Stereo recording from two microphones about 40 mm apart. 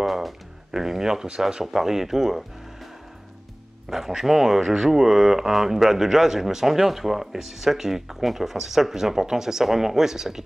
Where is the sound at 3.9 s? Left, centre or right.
Centre.